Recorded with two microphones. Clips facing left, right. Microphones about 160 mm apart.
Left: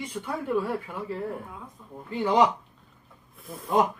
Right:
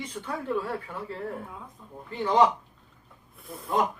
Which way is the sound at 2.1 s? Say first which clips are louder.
Even; 15° left (ahead or behind).